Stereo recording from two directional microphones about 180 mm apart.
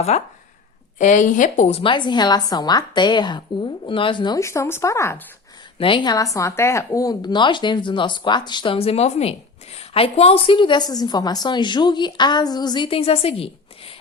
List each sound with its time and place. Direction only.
0.1 s a woman's voice: 40° left (ahead or behind); by 5.2 s 15° left (ahead or behind)
5.8 s a woman's voice: 25° left (ahead or behind)